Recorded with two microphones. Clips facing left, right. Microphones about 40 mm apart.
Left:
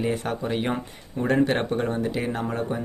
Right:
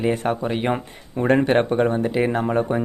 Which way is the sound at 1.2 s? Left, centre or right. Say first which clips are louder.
Right 5 dB; right.